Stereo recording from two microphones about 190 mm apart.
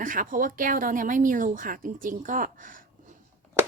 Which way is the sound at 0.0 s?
45° right (ahead or behind).